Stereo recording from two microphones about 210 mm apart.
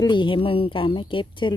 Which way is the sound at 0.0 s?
20° left (ahead or behind).